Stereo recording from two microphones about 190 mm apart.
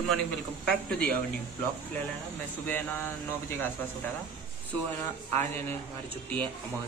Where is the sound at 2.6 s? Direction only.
10° left (ahead or behind).